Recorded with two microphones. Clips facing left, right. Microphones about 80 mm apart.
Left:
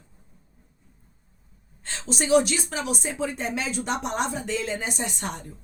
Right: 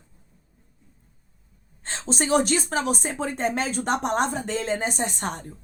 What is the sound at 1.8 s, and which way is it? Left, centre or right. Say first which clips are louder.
A woman's voice: right 1 dB; right.